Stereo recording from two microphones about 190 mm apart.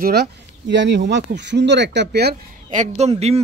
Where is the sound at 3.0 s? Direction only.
35° right (ahead or behind).